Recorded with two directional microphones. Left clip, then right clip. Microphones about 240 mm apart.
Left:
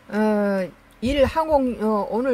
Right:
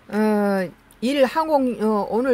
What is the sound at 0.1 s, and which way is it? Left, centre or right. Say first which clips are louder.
Speech: right 1 dB; centre.